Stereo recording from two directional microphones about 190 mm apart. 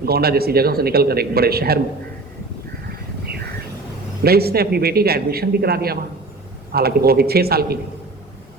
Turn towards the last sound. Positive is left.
turn(degrees=-55)  # may be behind; listen again after turning